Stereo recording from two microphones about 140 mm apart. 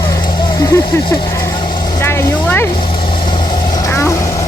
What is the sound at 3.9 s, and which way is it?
Vehicle, 20° left (ahead or behind).